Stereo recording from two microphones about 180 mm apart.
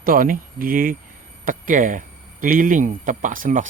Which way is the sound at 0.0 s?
50° right (ahead or behind).